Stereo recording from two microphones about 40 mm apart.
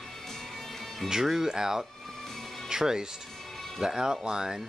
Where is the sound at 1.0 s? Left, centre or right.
Centre.